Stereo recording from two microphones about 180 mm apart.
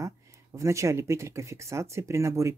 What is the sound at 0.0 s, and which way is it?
Speech, 15° right (ahead or behind).